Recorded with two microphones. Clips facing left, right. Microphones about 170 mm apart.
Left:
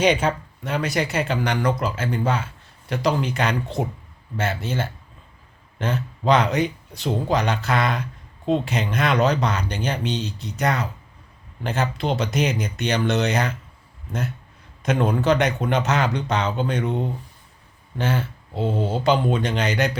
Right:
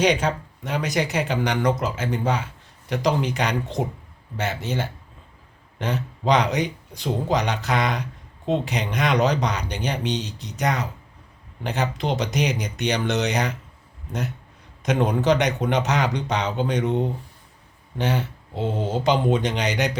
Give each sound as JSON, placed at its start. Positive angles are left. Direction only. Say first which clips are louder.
{"t": 0.6, "sound": "speech", "louder": "left 1 dB", "side_deg": -15}
{"t": 14.8, "sound": "speech", "louder": "even", "side_deg": -15}